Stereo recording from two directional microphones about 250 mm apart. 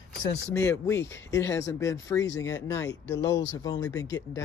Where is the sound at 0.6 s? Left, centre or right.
Centre.